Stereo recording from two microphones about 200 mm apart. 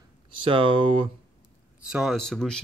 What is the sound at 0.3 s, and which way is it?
Speech, 25° right (ahead or behind).